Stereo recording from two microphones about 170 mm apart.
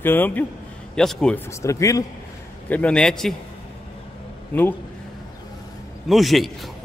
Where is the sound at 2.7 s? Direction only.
10° left (ahead or behind).